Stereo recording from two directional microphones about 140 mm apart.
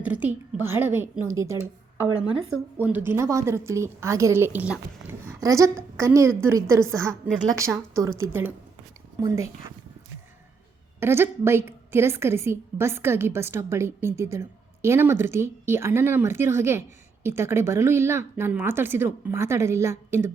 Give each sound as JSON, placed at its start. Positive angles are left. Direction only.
{"t": 0.0, "sound": "a woman's voice", "side_deg": -10}
{"t": 5.4, "sound": "a woman's voice", "side_deg": -20}
{"t": 11.0, "sound": "a woman's voice", "side_deg": -15}